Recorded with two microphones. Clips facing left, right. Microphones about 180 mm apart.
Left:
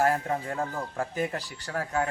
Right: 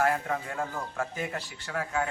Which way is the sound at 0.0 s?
40° left (ahead or behind).